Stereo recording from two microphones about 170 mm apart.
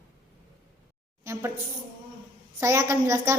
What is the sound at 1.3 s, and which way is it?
Speech, 15° right (ahead or behind).